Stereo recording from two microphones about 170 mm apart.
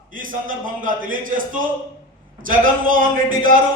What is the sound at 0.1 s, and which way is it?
A man's voice, 50° right (ahead or behind).